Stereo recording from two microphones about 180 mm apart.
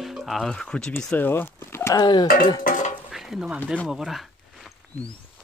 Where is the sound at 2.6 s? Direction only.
45° left (ahead or behind).